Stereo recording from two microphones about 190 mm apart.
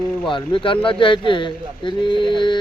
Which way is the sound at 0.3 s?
25° left (ahead or behind).